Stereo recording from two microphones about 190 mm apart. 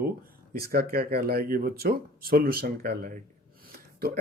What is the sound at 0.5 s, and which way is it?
Speech, 50° right (ahead or behind).